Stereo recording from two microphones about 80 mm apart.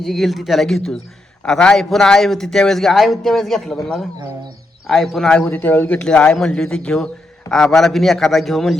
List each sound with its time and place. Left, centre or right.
0.0 s speech: centre
4.9 s speech: centre
5.5 s a man's voice: left
6.0 s a man's voice: centre